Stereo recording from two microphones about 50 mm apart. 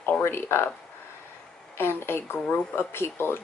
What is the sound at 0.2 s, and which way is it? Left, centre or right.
Speech, left.